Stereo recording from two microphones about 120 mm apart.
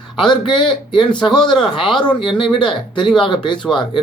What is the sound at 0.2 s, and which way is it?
Speech, 40° left (ahead or behind).